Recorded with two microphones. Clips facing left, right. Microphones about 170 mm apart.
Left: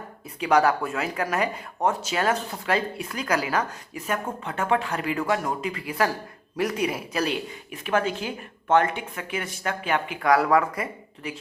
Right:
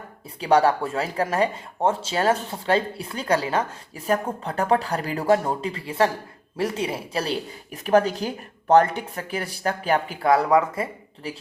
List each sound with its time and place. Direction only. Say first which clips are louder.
0.3 s speech: right 2 dB; 30° right (ahead or behind)